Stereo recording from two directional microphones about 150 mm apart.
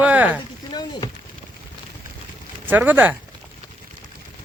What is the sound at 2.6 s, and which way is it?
Speech, 10° right (ahead or behind).